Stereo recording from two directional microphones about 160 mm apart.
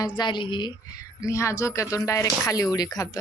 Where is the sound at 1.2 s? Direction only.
20° left (ahead or behind).